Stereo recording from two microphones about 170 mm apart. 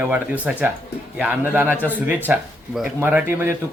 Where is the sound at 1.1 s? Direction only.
10° right (ahead or behind).